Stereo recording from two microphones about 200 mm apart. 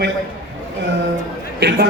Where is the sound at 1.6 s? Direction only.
55° right (ahead or behind).